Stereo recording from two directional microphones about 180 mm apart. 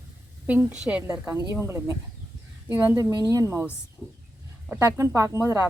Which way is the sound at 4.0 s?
5° left (ahead or behind).